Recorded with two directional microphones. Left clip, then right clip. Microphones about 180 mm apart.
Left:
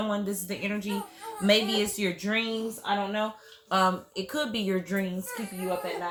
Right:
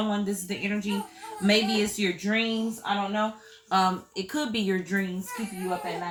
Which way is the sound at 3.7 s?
35° left (ahead or behind).